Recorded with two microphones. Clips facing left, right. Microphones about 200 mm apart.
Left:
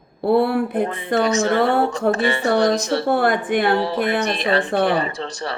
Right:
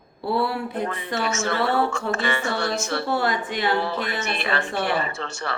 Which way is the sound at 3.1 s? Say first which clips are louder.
Left 7 dB; 55° left (ahead or behind).